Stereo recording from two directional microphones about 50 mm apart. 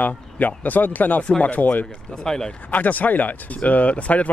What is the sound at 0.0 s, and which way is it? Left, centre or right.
Speech, left.